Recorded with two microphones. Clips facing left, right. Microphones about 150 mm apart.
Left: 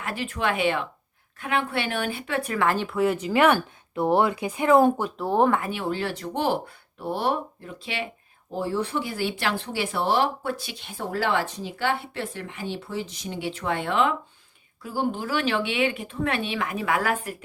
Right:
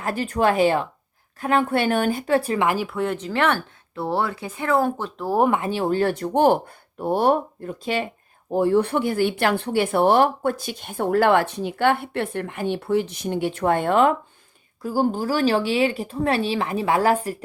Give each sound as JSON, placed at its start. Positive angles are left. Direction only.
{"t": 0.0, "sound": "speech", "side_deg": -40}
{"t": 2.6, "sound": "speech", "side_deg": -15}
{"t": 2.8, "sound": "speech", "side_deg": 0}
{"t": 5.1, "sound": "speech", "side_deg": 0}
{"t": 5.4, "sound": "speech", "side_deg": -20}
{"t": 5.7, "sound": "speech", "side_deg": -40}
{"t": 8.4, "sound": "speech", "side_deg": -55}